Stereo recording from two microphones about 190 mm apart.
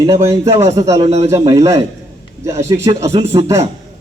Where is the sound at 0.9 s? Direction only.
35° right (ahead or behind).